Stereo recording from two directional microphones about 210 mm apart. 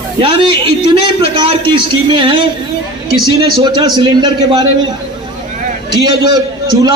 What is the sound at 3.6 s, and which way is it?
Speech, 20° right (ahead or behind).